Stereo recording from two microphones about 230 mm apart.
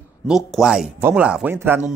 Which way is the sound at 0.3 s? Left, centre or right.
Centre.